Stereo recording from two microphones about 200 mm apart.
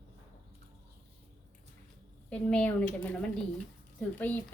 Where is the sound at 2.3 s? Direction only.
5° left (ahead or behind).